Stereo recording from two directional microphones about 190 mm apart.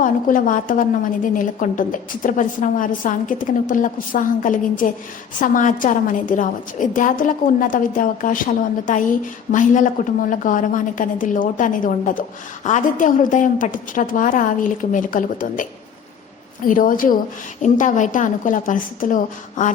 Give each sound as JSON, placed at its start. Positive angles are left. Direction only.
{"t": 0.0, "sound": "a woman's voice", "side_deg": 45}
{"t": 16.6, "sound": "a woman's voice", "side_deg": 45}